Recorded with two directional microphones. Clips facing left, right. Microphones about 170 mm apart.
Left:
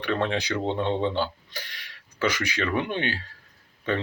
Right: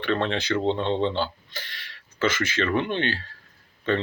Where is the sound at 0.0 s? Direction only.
10° left (ahead or behind).